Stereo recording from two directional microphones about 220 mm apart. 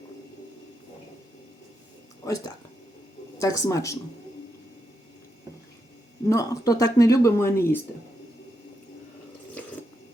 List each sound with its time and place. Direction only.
2.2 s speech: 15° left (ahead or behind)
6.2 s speech: 15° left (ahead or behind)